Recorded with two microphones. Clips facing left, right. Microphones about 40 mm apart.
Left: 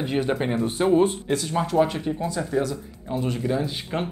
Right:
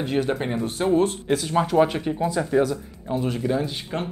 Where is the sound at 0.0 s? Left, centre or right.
Centre.